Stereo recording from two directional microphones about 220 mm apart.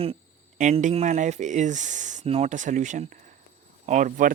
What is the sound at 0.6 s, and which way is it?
Speech, 35° right (ahead or behind).